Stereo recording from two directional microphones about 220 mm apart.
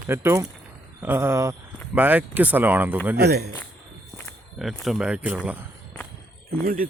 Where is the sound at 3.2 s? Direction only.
45° right (ahead or behind).